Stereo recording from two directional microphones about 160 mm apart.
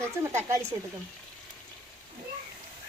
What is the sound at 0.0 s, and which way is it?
Speech, 15° right (ahead or behind).